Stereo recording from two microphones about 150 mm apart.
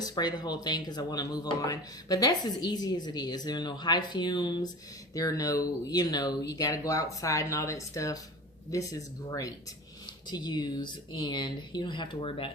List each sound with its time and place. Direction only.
0.0 s speech: 30° left (ahead or behind)